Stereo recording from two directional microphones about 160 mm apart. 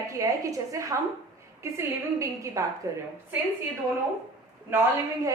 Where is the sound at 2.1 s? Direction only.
20° right (ahead or behind).